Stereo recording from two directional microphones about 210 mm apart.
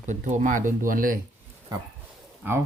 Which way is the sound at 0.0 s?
35° right (ahead or behind).